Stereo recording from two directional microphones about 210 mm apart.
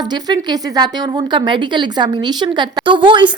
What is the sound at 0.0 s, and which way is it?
A woman's voice, 20° right (ahead or behind).